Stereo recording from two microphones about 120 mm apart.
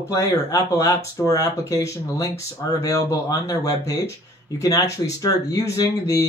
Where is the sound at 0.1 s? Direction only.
25° left (ahead or behind).